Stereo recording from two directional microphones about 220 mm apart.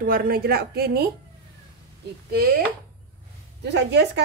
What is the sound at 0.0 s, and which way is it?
A woman's voice, 40° right (ahead or behind).